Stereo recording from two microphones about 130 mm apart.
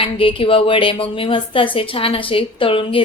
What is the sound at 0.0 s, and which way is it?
A woman's voice, 45° left (ahead or behind).